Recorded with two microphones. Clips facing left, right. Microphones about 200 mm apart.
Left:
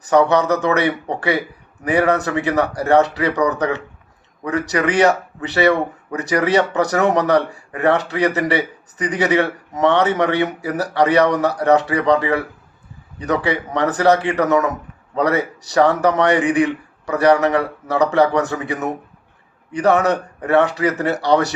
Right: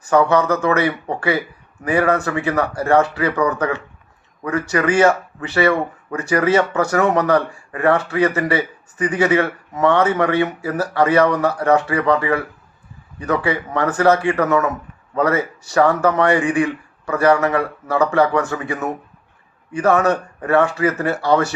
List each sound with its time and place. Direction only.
0.1 s a man's voice: 20° left (ahead or behind)